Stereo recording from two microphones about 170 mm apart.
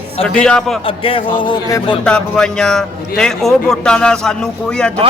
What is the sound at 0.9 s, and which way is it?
Music, 30° left (ahead or behind).